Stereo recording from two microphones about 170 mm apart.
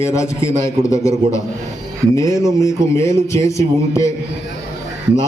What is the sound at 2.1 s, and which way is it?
A man's voice, 15° left (ahead or behind).